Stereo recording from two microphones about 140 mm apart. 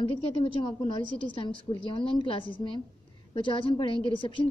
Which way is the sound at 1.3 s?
40° left (ahead or behind).